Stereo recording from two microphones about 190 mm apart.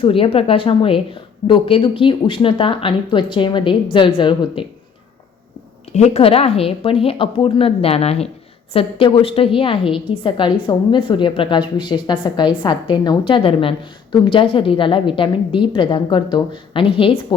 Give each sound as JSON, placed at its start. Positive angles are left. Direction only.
{"t": 0.0, "sound": "a woman's voice", "side_deg": 30}
{"t": 5.9, "sound": "a woman's voice", "side_deg": 35}